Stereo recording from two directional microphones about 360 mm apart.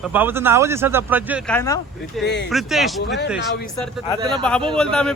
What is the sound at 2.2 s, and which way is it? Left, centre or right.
Speech, left.